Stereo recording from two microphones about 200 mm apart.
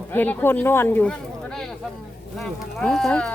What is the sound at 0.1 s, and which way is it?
Speech, 10° left (ahead or behind).